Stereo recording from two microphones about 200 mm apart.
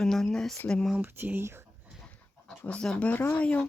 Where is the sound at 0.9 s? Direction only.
10° right (ahead or behind).